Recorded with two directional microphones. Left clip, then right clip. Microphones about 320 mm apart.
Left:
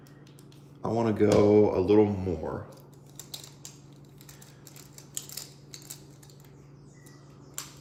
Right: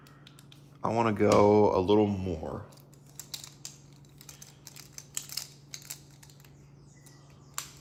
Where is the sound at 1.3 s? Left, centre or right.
Right.